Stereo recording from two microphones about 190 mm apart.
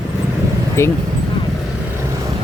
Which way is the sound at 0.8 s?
15° left (ahead or behind).